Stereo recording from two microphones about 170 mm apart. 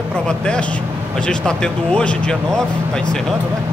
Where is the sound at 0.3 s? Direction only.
5° left (ahead or behind).